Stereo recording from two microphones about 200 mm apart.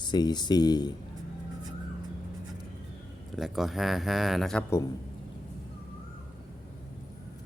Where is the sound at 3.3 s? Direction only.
Centre (ahead or behind).